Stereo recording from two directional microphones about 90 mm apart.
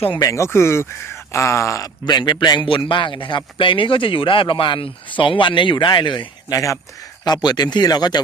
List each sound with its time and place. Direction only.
0.2 s speech: 35° left (ahead or behind)
2.0 s a man's voice: 55° left (ahead or behind)
6.5 s speech: 35° left (ahead or behind)
7.3 s speech: 50° left (ahead or behind)